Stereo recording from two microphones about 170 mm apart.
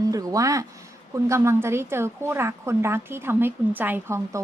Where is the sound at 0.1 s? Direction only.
20° right (ahead or behind).